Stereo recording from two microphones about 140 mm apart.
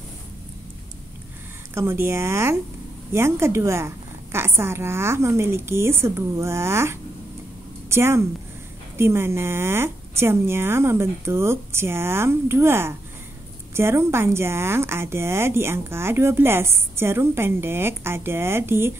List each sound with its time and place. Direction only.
1.7 s a woman's voice: 15° right (ahead or behind)